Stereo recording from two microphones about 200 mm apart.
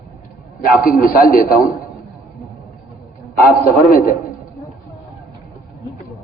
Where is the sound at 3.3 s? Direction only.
45° left (ahead or behind).